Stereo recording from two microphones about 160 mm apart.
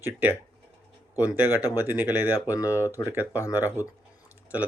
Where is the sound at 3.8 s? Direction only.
15° right (ahead or behind).